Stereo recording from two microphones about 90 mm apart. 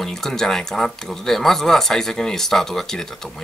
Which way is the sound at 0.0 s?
5° left (ahead or behind).